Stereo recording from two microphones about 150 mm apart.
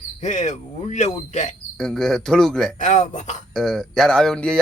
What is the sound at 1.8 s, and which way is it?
Speech, 5° left (ahead or behind).